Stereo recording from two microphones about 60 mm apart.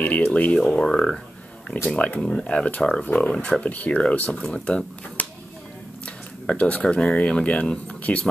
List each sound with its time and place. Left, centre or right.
0.0 s speech: left
0.6 s speech: centre
2.4 s speech: centre
2.8 s speech: centre
3.3 s speech: left
4.3 s speech: centre
5.2 s a sound: left
6.4 s speech: left